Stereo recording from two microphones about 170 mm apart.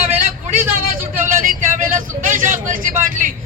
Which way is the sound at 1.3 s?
50° right (ahead or behind).